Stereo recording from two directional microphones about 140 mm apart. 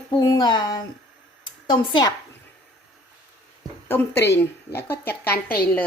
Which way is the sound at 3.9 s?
15° left (ahead or behind).